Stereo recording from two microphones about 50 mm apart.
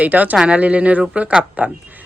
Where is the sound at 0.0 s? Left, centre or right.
Right.